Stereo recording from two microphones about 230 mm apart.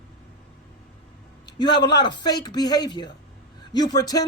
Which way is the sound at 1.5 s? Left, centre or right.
Centre.